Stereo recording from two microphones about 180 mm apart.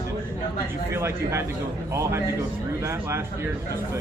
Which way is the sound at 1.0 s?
15° right (ahead or behind).